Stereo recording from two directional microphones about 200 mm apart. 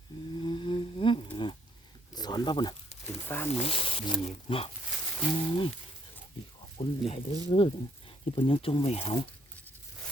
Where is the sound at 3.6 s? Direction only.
25° left (ahead or behind).